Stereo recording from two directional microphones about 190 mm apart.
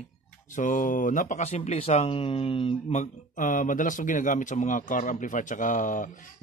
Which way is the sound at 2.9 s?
40° left (ahead or behind).